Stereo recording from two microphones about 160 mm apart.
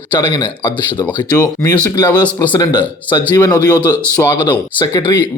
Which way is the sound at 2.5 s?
25° left (ahead or behind).